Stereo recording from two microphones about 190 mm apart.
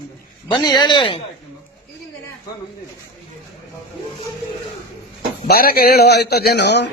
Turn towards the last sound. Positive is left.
turn(degrees=60)  # may be behind; listen again after turning